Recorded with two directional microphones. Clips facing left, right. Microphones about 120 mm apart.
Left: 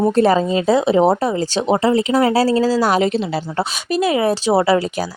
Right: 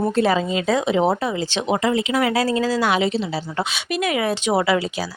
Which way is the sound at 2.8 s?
45° left (ahead or behind).